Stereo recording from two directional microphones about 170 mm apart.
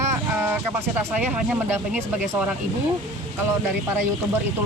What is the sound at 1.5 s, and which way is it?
Speech, 5° right (ahead or behind).